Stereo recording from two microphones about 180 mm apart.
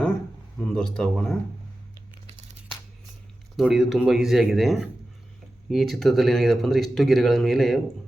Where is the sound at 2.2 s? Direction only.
35° right (ahead or behind).